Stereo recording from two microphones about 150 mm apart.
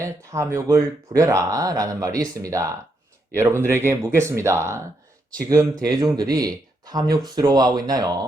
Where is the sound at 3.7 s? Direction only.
15° right (ahead or behind).